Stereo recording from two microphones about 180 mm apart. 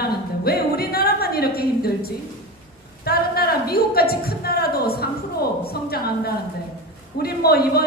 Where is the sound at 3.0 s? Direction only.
60° left (ahead or behind).